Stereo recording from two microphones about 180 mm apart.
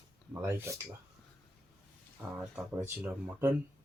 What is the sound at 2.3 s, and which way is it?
Speech, 10° right (ahead or behind).